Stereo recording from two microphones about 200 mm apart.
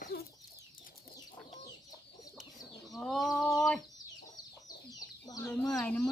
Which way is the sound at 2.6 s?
Centre (ahead or behind).